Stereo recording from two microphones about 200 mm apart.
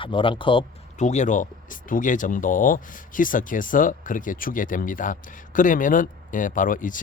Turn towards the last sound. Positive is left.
turn(degrees=40)  # may be behind; listen again after turning